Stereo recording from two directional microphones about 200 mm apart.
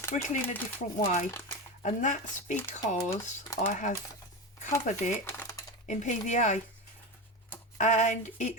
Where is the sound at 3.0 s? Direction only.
15° left (ahead or behind).